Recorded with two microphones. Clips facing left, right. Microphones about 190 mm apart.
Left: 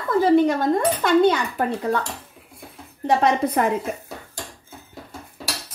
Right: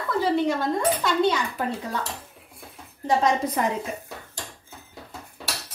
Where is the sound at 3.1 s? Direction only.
60° left (ahead or behind).